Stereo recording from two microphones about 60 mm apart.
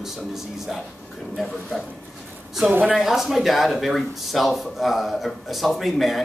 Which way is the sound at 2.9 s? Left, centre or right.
Centre.